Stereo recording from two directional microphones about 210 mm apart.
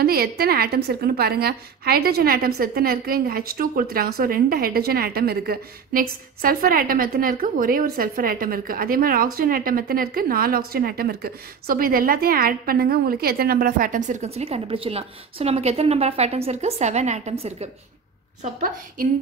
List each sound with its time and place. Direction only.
0.0 s a woman's voice: 45° right (ahead or behind); by 17.6 s 30° right (ahead or behind)
18.4 s a woman's voice: 40° right (ahead or behind)